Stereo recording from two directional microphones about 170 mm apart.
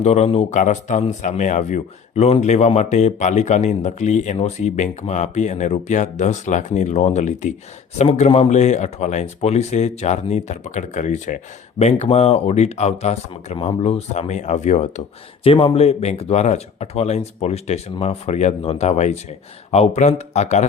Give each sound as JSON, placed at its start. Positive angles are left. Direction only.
{"t": 0.0, "sound": "speech", "side_deg": 40}